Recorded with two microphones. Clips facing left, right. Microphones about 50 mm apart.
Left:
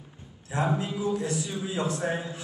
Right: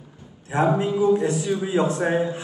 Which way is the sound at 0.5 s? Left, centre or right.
Right.